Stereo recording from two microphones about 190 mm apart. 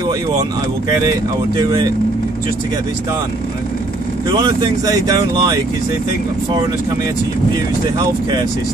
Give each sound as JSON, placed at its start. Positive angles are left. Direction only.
{"t": 1.6, "sound": "speech", "side_deg": -20}
{"t": 4.4, "sound": "speech", "side_deg": -20}